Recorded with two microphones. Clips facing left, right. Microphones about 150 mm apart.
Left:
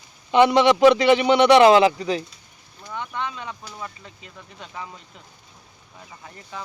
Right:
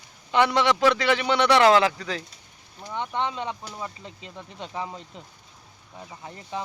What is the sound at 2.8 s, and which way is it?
Speech, 25° right (ahead or behind).